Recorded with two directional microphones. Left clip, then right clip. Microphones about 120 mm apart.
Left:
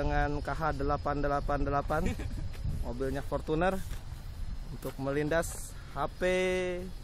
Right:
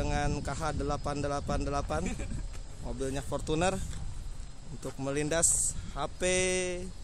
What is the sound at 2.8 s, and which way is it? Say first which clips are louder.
Speech: left 1 dB; 5° right (ahead or behind).